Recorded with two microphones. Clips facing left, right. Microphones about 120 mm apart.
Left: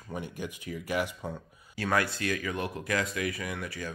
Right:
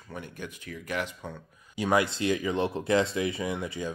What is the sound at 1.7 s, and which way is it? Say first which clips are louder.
Speech: right 3 dB; 15° right (ahead or behind).